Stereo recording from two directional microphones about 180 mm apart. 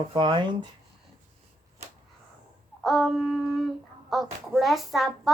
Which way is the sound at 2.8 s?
Centre (ahead or behind).